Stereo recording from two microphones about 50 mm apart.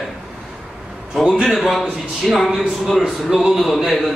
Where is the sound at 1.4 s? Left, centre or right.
Centre.